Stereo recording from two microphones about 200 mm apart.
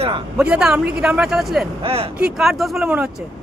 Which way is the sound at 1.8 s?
30° right (ahead or behind).